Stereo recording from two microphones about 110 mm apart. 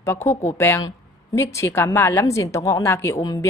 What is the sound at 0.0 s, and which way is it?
A woman's voice, 25° left (ahead or behind).